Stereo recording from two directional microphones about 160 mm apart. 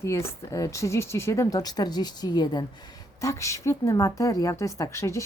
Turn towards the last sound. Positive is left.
turn(degrees=20)  # may be behind; listen again after turning